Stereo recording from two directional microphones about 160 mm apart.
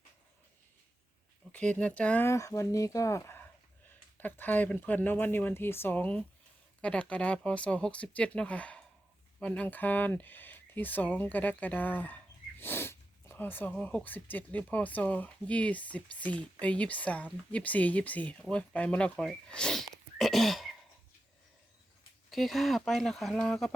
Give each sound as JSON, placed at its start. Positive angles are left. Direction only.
{"t": 1.5, "sound": "speech", "side_deg": 5}
{"t": 22.3, "sound": "speech", "side_deg": 0}